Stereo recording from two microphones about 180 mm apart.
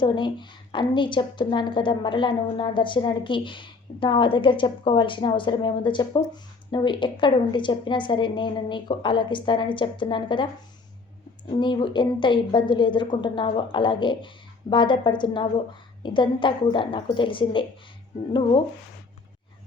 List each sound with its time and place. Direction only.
0.0 s a woman's voice: 25° left (ahead or behind)